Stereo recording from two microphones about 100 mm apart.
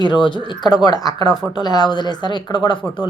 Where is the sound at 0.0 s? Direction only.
50° left (ahead or behind).